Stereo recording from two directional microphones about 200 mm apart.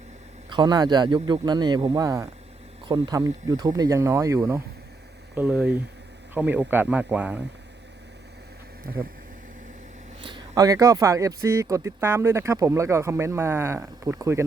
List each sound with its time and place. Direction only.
0.5 s speech: 20° right (ahead or behind)
10.2 s speech: 25° right (ahead or behind)